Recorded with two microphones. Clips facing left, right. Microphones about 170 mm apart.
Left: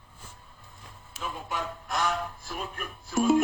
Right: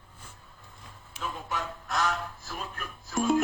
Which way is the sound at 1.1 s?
15° left (ahead or behind).